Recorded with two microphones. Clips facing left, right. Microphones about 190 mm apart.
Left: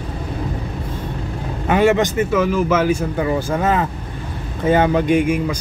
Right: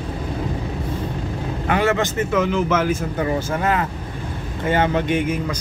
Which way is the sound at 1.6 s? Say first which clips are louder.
Left 5 dB; 20° left (ahead or behind).